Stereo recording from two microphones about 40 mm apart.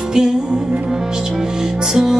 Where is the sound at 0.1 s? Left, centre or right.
Centre.